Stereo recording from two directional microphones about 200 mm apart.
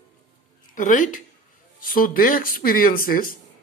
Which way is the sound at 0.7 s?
40° left (ahead or behind).